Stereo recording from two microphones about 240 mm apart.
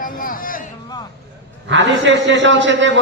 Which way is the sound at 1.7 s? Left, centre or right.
Right.